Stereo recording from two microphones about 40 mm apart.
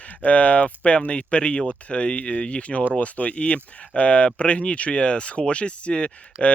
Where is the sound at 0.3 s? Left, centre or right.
Left.